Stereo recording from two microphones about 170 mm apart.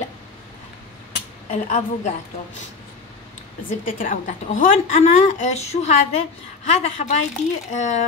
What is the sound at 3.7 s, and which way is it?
A woman's voice, 55° left (ahead or behind).